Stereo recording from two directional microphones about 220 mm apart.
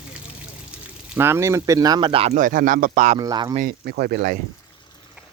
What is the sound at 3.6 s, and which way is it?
Speech, 45° right (ahead or behind).